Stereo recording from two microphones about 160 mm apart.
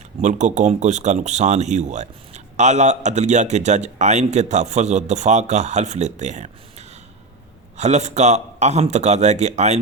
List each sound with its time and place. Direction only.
0.2 s speech: 50° right (ahead or behind)